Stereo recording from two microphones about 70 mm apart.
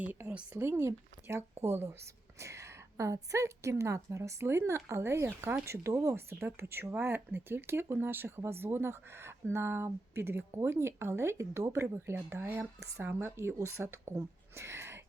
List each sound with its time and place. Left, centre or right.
0.3 s speech: right
0.6 s a woman's voice: right
13.3 s speech: right